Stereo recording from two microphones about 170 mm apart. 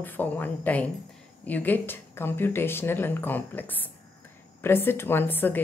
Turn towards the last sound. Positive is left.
turn(degrees=10)  # may be behind; listen again after turning